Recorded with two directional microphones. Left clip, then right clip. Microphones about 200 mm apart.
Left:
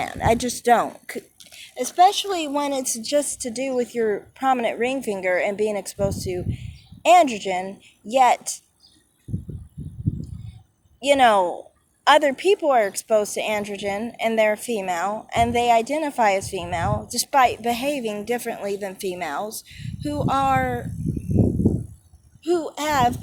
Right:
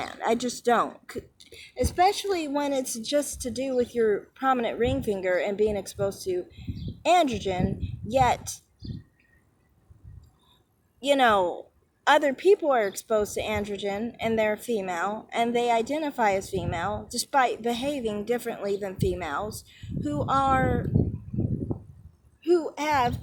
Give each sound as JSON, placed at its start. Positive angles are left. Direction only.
{"t": 0.0, "sound": "speech", "side_deg": 25}
{"t": 11.0, "sound": "speech", "side_deg": 25}
{"t": 22.4, "sound": "speech", "side_deg": 30}